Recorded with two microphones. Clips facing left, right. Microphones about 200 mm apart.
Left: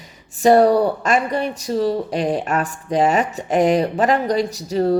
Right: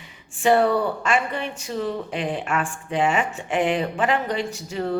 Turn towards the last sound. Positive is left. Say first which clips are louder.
# left 8 dB
turn(degrees=40)  # may be behind; listen again after turning